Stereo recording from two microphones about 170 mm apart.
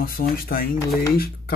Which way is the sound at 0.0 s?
60° left (ahead or behind).